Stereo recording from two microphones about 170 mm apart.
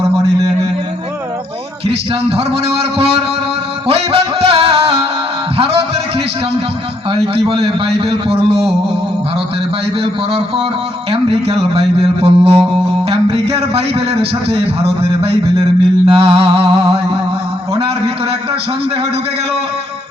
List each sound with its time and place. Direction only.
1.9 s speech: 35° right (ahead or behind)
7.3 s speech: 35° right (ahead or behind)
11.1 s speech: 35° right (ahead or behind)
13.1 s music: 35° right (ahead or behind)
14.5 s speech: 35° right (ahead or behind)
16.0 s a sound: 30° right (ahead or behind)
17.7 s a man's voice: 35° right (ahead or behind)